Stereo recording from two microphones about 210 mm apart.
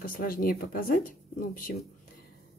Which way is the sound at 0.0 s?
45° left (ahead or behind).